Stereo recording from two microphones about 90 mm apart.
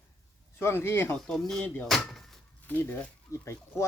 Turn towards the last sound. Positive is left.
turn(degrees=30)  # may be behind; listen again after turning